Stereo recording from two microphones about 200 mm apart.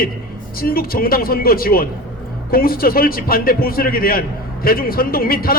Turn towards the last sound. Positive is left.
turn(degrees=45)  # may be behind; listen again after turning